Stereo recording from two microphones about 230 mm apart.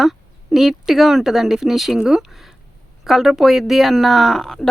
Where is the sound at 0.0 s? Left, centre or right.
Centre.